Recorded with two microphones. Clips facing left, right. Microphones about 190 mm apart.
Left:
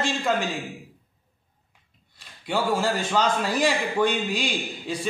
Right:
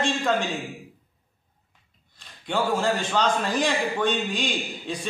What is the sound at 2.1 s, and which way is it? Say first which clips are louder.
A man's voice: even; 5° left (ahead or behind).